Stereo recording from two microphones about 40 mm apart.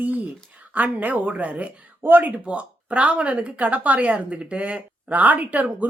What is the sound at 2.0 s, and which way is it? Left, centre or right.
A woman's voice, right.